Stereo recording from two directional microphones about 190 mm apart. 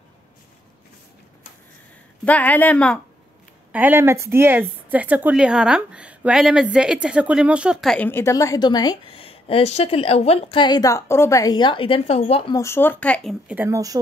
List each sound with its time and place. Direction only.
2.2 s a woman's voice: 10° left (ahead or behind)
3.7 s a woman's voice: 10° right (ahead or behind); by 12.5 s 30° left (ahead or behind)
12.5 s speech: 15° left (ahead or behind); by 13.9 s 15° right (ahead or behind)